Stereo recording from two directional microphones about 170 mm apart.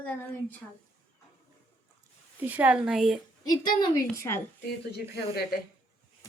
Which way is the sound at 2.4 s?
10° right (ahead or behind).